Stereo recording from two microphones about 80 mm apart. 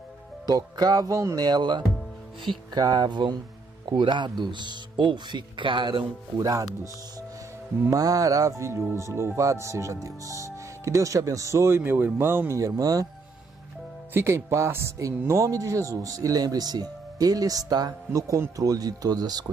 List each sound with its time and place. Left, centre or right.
0.5 s speech: right
1.4 s speech: right
7.9 s speech: right
12.5 s speech: right
14.1 s speech: right
18.1 s speech: right